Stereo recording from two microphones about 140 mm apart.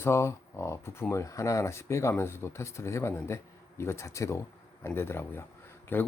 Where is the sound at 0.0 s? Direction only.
20° left (ahead or behind).